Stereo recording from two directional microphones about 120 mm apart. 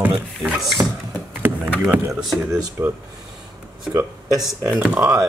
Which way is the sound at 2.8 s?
25° right (ahead or behind).